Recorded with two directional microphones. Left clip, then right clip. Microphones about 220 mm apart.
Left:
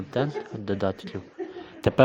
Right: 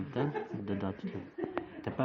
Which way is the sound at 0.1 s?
35° left (ahead or behind).